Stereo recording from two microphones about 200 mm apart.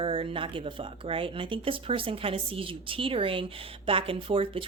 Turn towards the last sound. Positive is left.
turn(degrees=-25)  # may be behind; listen again after turning